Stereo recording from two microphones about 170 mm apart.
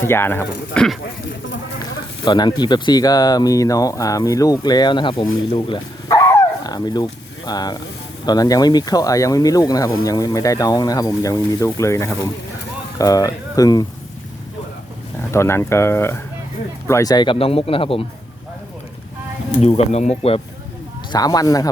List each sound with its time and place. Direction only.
0.0 s speech: 15° left (ahead or behind)
2.2 s speech: 25° left (ahead or behind)
6.1 s dog: 15° left (ahead or behind)
8.2 s speech: 25° left (ahead or behind)
15.3 s speech: 15° left (ahead or behind); by 18.0 s 35° left (ahead or behind)
19.6 s speech: 40° left (ahead or behind)
21.1 s speech: 20° left (ahead or behind)